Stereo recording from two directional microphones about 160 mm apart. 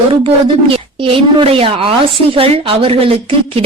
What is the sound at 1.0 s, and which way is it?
A woman's voice, 35° right (ahead or behind).